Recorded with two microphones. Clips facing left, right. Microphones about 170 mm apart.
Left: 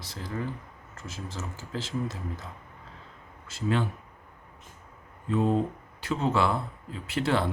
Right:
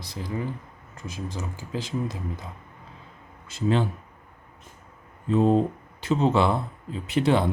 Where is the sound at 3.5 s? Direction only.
25° right (ahead or behind).